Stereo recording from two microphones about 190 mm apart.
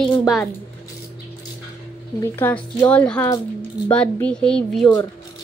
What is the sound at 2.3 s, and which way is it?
Speech, 10° left (ahead or behind).